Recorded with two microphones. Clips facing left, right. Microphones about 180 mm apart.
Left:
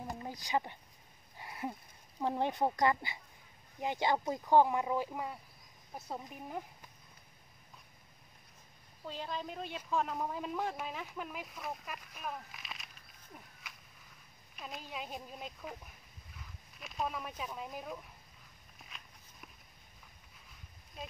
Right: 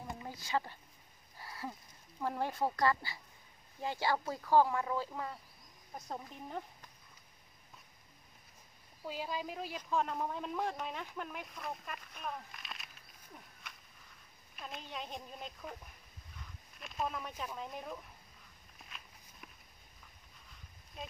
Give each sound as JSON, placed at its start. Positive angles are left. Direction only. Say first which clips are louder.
{"t": 0.3, "sound": "speech", "louder": "left 1 dB", "side_deg": 15}
{"t": 9.0, "sound": "speech", "louder": "right 1 dB", "side_deg": -10}
{"t": 14.5, "sound": "speech", "louder": "left 1 dB", "side_deg": 0}
{"t": 16.3, "sound": "a sound", "louder": "even", "side_deg": 0}
{"t": 17.6, "sound": "speech", "louder": "even", "side_deg": 5}
{"t": 18.8, "sound": "walk", "louder": "even", "side_deg": 0}
{"t": 21.0, "sound": "speech", "louder": "even", "side_deg": 0}